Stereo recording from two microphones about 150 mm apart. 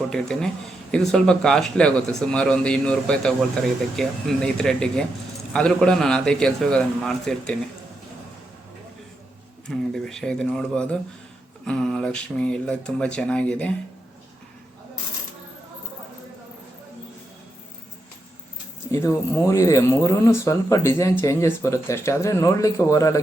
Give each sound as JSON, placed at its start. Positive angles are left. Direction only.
{"t": 0.1, "sound": "speech", "side_deg": 5}
{"t": 9.6, "sound": "speech", "side_deg": 5}
{"t": 18.9, "sound": "speech", "side_deg": 20}